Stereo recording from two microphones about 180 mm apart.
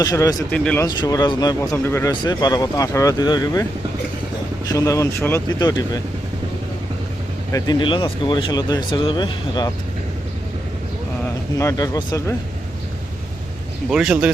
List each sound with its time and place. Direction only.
0.0 s speech: 20° left (ahead or behind)
0.5 s speech: 5° left (ahead or behind)
0.9 s speech: 20° left (ahead or behind)
4.7 s speech: 20° left (ahead or behind)
7.5 s speech: 25° left (ahead or behind)
11.5 s speech: 20° left (ahead or behind)
13.9 s speech: 5° right (ahead or behind)